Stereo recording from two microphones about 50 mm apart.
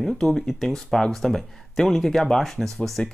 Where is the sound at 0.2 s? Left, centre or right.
Centre.